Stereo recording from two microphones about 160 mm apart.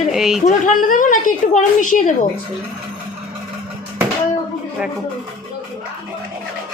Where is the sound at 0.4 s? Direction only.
55° left (ahead or behind).